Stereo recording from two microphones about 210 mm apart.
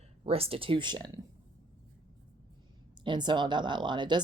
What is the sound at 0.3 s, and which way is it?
Speech, 30° right (ahead or behind).